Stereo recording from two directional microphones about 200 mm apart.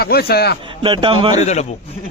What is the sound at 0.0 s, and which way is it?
Speech, 50° left (ahead or behind).